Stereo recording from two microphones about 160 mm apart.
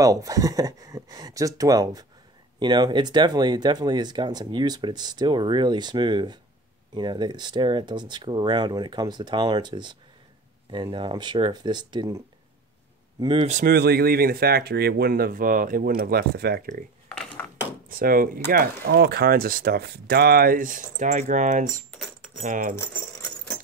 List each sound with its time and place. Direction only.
0.0 s speech: 20° right (ahead or behind)
13.4 s speech: 45° right (ahead or behind)
13.7 s speech: 85° right
17.8 s speech: 65° right (ahead or behind)